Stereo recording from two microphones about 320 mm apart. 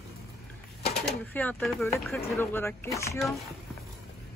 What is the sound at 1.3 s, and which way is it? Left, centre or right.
Speech, centre.